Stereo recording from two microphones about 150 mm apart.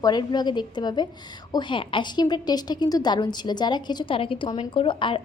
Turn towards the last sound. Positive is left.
turn(degrees=35)  # may be behind; listen again after turning